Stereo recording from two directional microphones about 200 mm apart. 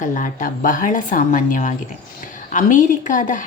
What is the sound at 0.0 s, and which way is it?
A woman's voice, 40° left (ahead or behind).